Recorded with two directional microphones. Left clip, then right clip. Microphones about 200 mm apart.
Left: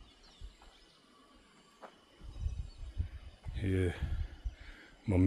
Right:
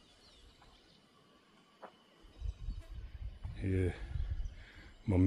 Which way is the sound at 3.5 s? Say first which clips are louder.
Left 2 dB; 10° left (ahead or behind).